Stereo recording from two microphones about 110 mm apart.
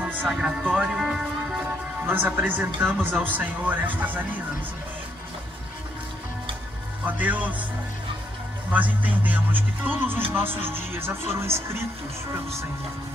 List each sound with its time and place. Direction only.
0.0 s speech: 10° right (ahead or behind)
2.0 s speech: 15° right (ahead or behind)
7.1 s speech: 15° right (ahead or behind)
8.7 s speech: 15° right (ahead or behind)